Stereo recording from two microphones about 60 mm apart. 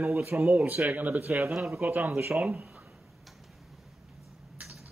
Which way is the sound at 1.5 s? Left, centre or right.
Centre.